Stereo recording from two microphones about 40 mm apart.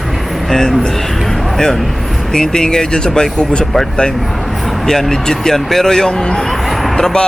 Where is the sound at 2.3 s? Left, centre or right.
Centre.